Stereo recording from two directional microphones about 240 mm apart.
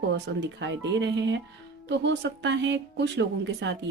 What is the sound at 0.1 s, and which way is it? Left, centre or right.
Speech, right.